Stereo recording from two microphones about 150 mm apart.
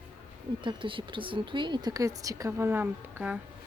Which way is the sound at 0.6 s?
35° right (ahead or behind).